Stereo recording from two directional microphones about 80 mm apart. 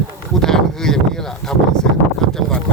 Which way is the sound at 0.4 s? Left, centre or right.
Centre.